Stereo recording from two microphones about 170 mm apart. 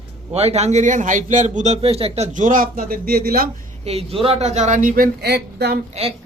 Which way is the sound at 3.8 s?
35° right (ahead or behind).